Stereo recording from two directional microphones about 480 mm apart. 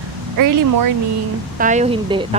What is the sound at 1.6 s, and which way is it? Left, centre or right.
Speech, centre.